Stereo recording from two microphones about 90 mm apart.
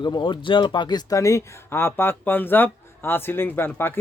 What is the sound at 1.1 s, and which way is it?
Speech, 35° left (ahead or behind).